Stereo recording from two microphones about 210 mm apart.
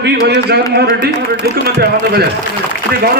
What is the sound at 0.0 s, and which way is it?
A man's voice, 50° right (ahead or behind).